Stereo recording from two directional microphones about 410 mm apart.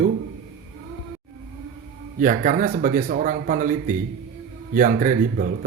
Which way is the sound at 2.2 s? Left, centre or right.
Centre.